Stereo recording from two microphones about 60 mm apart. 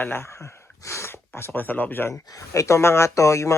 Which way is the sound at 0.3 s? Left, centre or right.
Left.